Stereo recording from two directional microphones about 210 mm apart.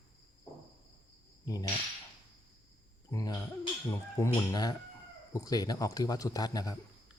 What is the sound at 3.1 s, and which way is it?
A man's voice, 15° left (ahead or behind).